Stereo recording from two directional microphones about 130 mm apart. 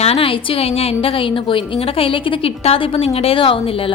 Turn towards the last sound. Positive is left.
turn(degrees=45)  # may be behind; listen again after turning